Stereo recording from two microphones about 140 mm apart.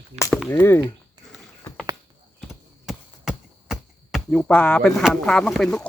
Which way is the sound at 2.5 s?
5° right (ahead or behind).